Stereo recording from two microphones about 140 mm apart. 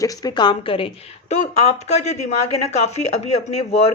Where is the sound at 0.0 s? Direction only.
30° left (ahead or behind).